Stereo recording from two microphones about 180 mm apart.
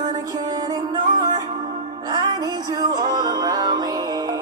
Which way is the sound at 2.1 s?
25° right (ahead or behind).